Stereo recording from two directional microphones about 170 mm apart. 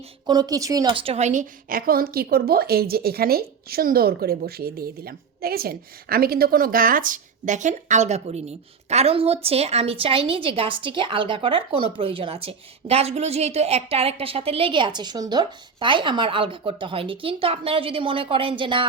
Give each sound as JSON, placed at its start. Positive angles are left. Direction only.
{"t": 0.3, "sound": "a woman's voice", "side_deg": -25}